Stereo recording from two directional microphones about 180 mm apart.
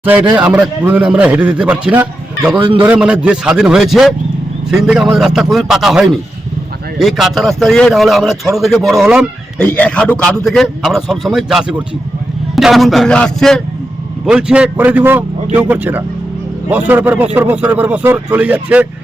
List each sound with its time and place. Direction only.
0.0 s speech: 10° right (ahead or behind)
2.6 s a man's voice: 25° right (ahead or behind)
2.8 s a man's voice: 5° right (ahead or behind)